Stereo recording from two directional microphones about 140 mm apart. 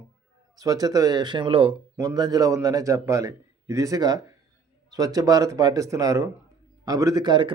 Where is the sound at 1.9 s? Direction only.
25° right (ahead or behind).